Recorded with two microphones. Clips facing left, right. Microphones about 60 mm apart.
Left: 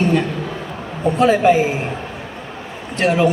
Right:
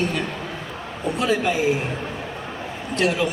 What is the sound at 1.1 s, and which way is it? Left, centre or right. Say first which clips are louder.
Speech: left 9 dB; left.